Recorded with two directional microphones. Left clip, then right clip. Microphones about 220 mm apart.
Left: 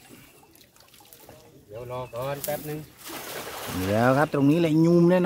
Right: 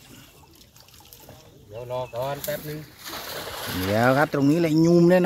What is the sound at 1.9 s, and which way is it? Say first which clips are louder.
Speech: right 3 dB; 10° left (ahead or behind).